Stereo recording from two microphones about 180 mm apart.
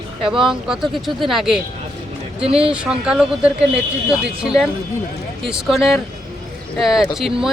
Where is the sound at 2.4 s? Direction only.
30° right (ahead or behind).